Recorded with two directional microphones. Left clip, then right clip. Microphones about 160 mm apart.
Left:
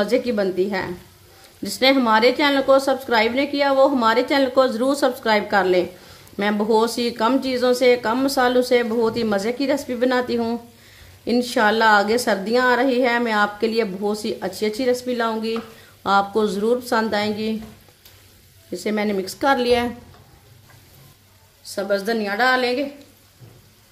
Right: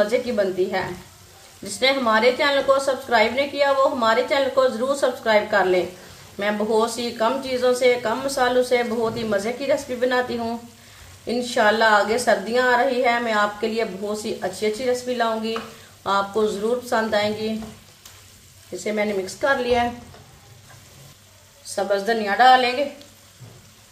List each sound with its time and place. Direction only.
0.0 s a woman's voice: 70° left (ahead or behind)
18.9 s a woman's voice: 75° left (ahead or behind)
21.7 s a woman's voice: 75° left (ahead or behind)